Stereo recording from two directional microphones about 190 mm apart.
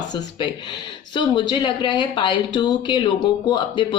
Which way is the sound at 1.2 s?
25° left (ahead or behind).